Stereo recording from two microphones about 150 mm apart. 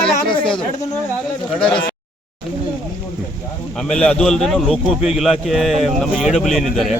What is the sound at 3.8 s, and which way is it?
A man's voice, 5° left (ahead or behind).